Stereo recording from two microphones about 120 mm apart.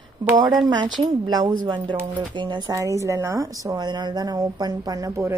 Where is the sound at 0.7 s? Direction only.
40° right (ahead or behind).